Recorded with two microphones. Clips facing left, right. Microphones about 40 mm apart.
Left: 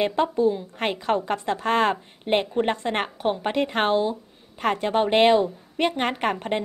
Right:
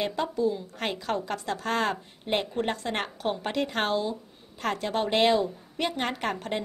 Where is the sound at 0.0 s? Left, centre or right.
Left.